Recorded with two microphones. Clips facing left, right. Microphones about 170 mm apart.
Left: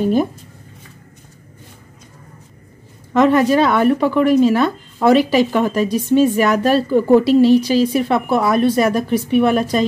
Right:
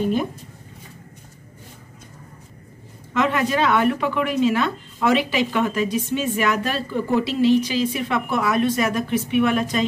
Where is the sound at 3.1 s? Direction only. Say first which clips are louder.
Left 8 dB; 40° left (ahead or behind).